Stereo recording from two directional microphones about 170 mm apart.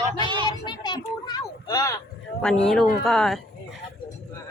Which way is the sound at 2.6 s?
Centre (ahead or behind).